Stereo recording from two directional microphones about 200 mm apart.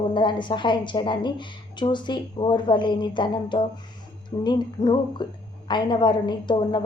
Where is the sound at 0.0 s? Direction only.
25° left (ahead or behind).